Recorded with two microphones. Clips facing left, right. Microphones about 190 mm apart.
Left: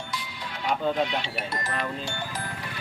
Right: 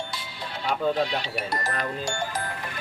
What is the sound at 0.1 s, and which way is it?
Speech, 30° right (ahead or behind).